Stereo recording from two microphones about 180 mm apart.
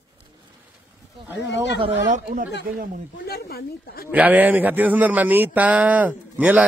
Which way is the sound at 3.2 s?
60° left (ahead or behind).